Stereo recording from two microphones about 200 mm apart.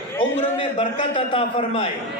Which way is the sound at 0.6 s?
25° left (ahead or behind).